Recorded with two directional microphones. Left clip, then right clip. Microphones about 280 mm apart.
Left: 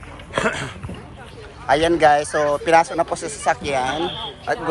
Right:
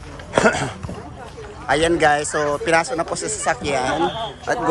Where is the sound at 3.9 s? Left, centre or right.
Right.